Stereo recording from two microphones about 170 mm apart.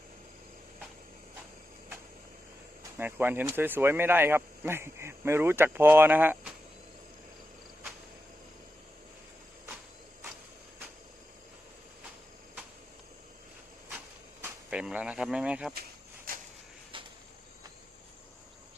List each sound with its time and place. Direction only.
3.0 s speech: 10° right (ahead or behind)
14.4 s speech: 5° right (ahead or behind)
16.9 s a sound: 30° right (ahead or behind)